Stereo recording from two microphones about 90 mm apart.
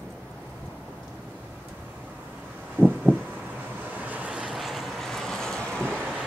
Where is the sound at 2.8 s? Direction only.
25° right (ahead or behind).